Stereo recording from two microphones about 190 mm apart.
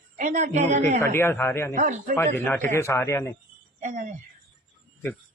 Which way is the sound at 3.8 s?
40° right (ahead or behind).